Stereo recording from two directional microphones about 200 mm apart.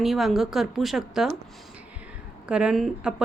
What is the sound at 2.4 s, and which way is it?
Speech, 5° right (ahead or behind).